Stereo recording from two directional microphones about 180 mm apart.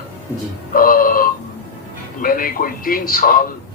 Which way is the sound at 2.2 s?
50° left (ahead or behind).